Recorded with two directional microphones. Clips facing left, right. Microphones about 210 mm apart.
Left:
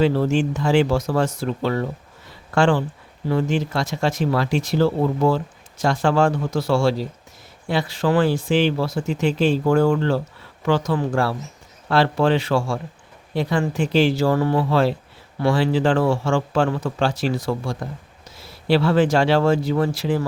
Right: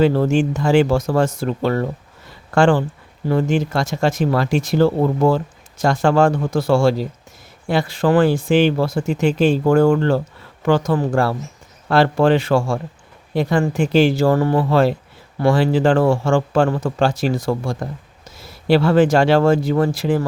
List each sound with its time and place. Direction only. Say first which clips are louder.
0.0 s speech: right 3 dB; 50° right (ahead or behind)